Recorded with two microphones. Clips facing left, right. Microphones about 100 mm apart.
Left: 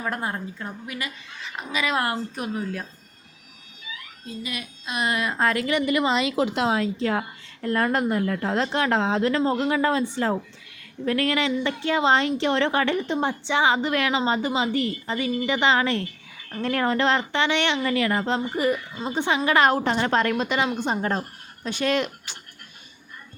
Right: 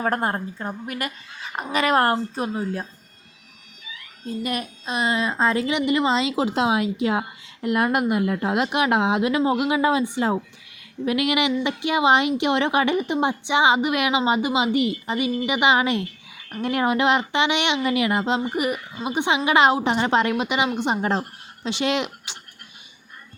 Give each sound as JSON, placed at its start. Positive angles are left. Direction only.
{"t": 0.0, "sound": "a woman's voice", "side_deg": -50}
{"t": 2.3, "sound": "a woman's voice", "side_deg": -30}
{"t": 4.3, "sound": "a woman's voice", "side_deg": -45}
{"t": 4.9, "sound": "a woman's voice", "side_deg": -25}
{"t": 6.7, "sound": "a woman's voice", "side_deg": -10}